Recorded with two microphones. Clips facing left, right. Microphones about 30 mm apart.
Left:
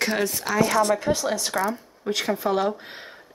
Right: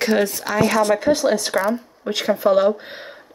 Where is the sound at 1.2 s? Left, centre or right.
Right.